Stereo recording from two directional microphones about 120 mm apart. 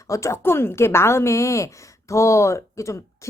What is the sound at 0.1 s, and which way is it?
A woman's voice, 25° left (ahead or behind).